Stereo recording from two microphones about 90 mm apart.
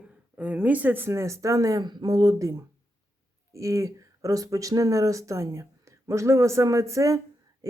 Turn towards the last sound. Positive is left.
turn(degrees=-40)  # may be behind; listen again after turning